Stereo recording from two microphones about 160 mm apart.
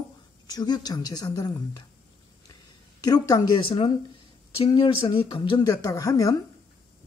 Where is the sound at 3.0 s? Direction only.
25° left (ahead or behind).